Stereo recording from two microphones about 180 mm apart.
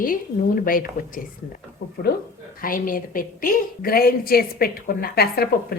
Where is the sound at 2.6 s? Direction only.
50° left (ahead or behind).